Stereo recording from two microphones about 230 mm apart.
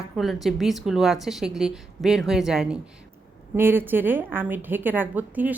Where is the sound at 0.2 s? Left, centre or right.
Centre.